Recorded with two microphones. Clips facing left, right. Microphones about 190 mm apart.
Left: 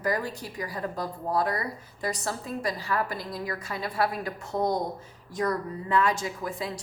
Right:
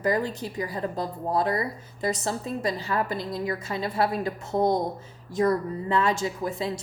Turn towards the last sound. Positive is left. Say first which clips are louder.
# right 4 dB
turn(degrees=-25)  # may be behind; listen again after turning